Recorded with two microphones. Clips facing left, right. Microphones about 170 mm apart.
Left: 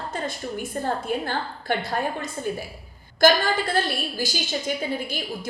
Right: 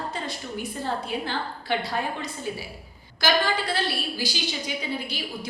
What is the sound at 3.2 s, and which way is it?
A woman's voice, 50° left (ahead or behind).